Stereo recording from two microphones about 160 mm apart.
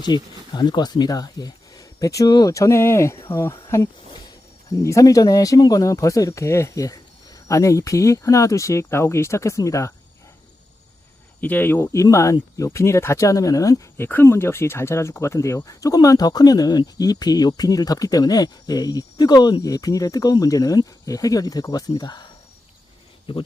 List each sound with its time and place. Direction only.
0.0 s speech: 25° left (ahead or behind)
11.3 s speech: 10° left (ahead or behind)
23.3 s speech: 35° left (ahead or behind)